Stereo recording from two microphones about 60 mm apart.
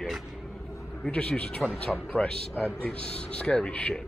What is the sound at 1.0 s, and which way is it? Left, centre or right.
Speech, left.